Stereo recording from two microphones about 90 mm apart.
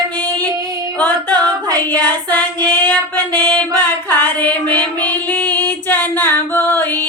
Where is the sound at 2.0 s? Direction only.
20° left (ahead or behind).